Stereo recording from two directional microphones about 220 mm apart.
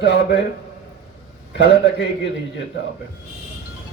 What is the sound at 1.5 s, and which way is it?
Speech, 50° left (ahead or behind).